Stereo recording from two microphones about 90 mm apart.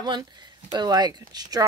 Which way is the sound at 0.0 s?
55° right (ahead or behind).